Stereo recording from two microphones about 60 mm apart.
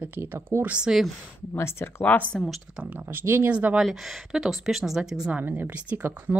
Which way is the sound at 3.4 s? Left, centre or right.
Right.